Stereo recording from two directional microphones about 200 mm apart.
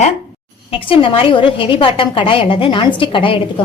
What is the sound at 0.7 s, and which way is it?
A woman's voice, 25° left (ahead or behind).